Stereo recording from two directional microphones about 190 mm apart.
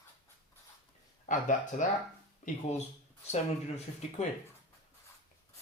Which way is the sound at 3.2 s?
35° left (ahead or behind).